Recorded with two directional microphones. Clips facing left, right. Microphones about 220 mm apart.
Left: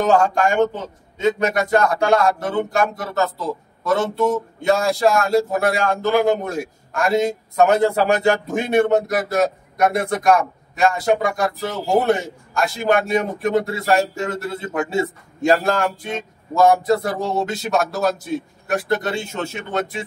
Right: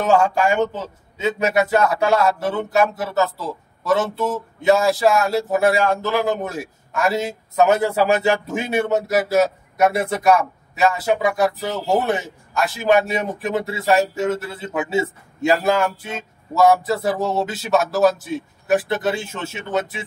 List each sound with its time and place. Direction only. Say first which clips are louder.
0.0 s a man's voice: even; 5° right (ahead or behind)